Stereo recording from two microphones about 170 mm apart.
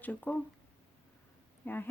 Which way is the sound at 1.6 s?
10° left (ahead or behind).